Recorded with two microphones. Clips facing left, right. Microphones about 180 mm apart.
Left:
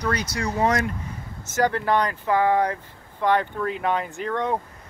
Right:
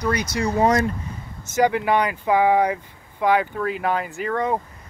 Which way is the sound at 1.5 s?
10° right (ahead or behind).